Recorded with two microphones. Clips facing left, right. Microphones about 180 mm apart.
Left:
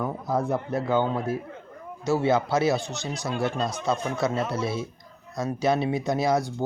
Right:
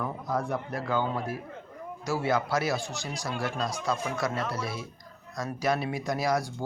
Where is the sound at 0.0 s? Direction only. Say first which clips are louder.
Left 4 dB; 25° left (ahead or behind).